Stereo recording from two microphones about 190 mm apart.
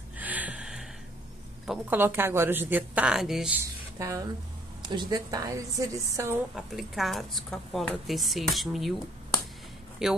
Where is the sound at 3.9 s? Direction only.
15° right (ahead or behind).